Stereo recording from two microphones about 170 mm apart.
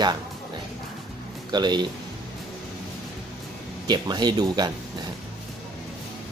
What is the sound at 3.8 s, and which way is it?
Speech, 25° right (ahead or behind).